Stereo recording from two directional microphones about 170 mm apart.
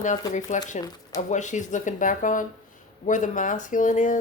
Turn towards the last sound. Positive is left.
turn(degrees=50)  # may be behind; listen again after turning